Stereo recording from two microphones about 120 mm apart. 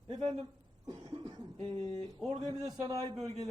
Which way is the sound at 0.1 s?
65° right (ahead or behind).